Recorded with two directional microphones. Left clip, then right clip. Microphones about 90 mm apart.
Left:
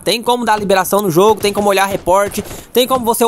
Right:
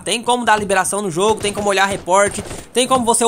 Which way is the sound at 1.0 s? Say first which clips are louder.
Left 6 dB; 70° left (ahead or behind).